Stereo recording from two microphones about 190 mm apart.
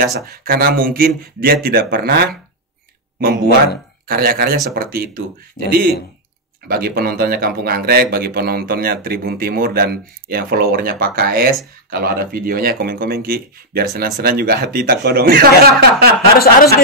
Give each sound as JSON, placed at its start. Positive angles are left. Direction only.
{"t": 0.0, "sound": "speech", "side_deg": -55}
{"t": 4.1, "sound": "speech", "side_deg": -55}